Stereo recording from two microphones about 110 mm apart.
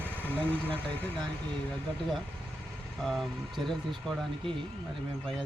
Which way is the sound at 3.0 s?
Centre (ahead or behind).